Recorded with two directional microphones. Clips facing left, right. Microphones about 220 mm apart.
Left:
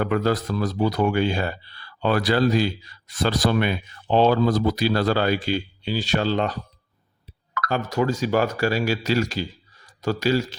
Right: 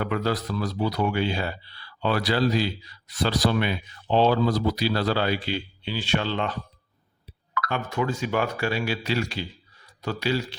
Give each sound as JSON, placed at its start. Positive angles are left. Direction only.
{"t": 0.0, "sound": "speech", "side_deg": 45}